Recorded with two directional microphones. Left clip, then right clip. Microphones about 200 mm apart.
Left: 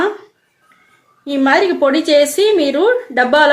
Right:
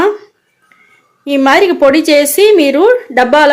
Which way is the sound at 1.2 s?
30° right (ahead or behind).